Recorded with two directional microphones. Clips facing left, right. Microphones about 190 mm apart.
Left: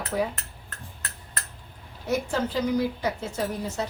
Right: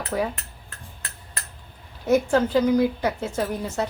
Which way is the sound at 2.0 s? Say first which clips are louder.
Right 7 dB; 50° right (ahead or behind).